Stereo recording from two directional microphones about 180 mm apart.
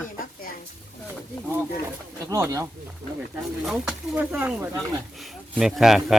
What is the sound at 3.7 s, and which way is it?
Speech, 5° right (ahead or behind).